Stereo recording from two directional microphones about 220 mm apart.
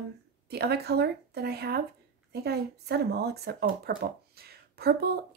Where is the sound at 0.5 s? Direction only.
45° right (ahead or behind).